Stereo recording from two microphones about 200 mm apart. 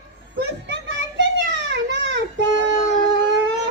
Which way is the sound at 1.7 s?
60° right (ahead or behind).